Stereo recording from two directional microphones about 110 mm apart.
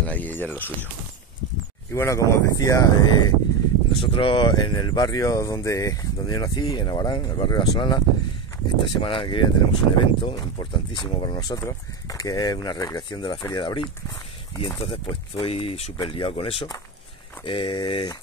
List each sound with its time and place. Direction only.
0.0 s speech: 15° left (ahead or behind)
1.9 s speech: 25° left (ahead or behind)
3.9 s speech: 55° left (ahead or behind)
9.0 s speech: 50° left (ahead or behind)
14.8 s speech: 55° left (ahead or behind)
16.0 s speech: 55° left (ahead or behind)